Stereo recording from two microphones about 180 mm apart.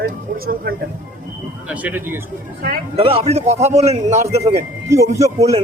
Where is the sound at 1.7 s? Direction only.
10° right (ahead or behind).